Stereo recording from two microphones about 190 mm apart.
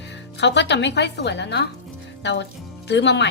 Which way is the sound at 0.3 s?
65° left (ahead or behind).